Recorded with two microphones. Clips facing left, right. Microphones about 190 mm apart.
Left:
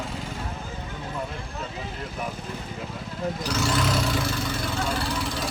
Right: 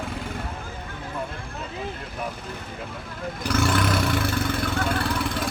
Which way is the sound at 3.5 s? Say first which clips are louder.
Right 4 dB; 55° right (ahead or behind).